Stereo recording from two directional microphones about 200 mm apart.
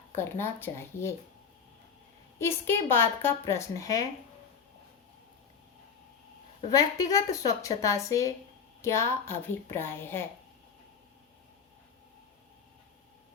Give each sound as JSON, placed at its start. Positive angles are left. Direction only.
{"t": 0.2, "sound": "a woman's voice", "side_deg": 10}
{"t": 2.4, "sound": "a woman's voice", "side_deg": 10}
{"t": 6.7, "sound": "a woman's voice", "side_deg": 20}